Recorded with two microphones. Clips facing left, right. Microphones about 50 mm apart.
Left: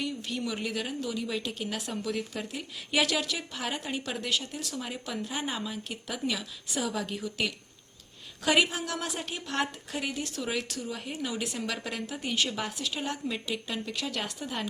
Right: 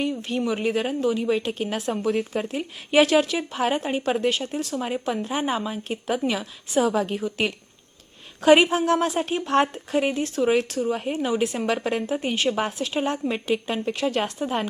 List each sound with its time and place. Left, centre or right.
0.0 s speech: right